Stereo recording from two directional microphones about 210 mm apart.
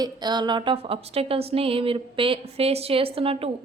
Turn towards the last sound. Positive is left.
turn(degrees=-25)  # may be behind; listen again after turning